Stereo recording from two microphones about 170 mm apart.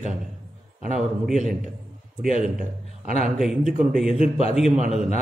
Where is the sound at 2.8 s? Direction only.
40° left (ahead or behind).